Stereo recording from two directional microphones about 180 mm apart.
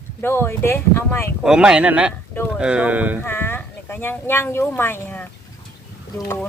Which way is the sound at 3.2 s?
15° left (ahead or behind).